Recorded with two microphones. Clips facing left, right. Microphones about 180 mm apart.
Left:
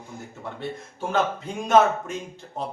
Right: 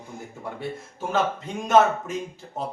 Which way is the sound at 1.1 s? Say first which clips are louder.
Even; centre (ahead or behind).